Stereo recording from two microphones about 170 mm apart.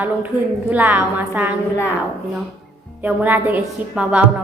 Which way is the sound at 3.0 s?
10° right (ahead or behind).